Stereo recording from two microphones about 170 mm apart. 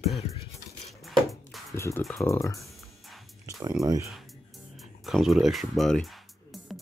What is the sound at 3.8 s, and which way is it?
Speech, 20° right (ahead or behind).